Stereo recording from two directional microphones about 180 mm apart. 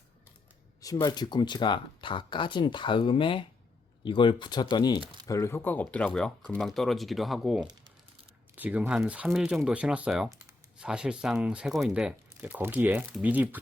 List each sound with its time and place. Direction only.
0.8 s speech: 20° left (ahead or behind); by 13.6 s 10° right (ahead or behind)